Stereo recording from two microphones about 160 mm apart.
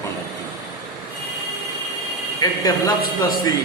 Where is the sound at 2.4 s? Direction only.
20° left (ahead or behind).